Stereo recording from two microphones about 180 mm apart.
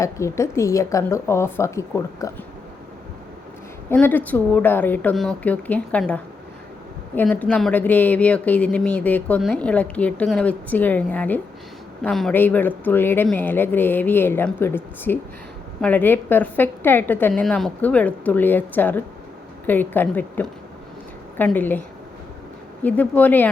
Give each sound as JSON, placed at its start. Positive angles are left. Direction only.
{"t": 0.0, "sound": "a woman's voice", "side_deg": 15}
{"t": 3.8, "sound": "a woman's voice", "side_deg": 10}